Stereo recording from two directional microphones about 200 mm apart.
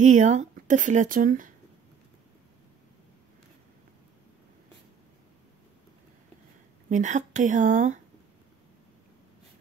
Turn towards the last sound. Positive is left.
turn(degrees=-40)  # may be behind; listen again after turning